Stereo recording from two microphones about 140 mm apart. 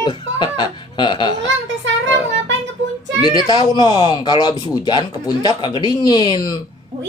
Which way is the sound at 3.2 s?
30° left (ahead or behind).